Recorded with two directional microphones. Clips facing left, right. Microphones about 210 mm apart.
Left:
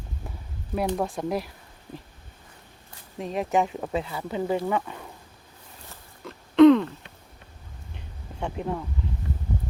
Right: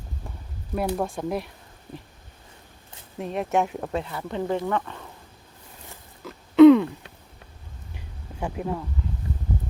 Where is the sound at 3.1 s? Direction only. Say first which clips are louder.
Even; centre (ahead or behind).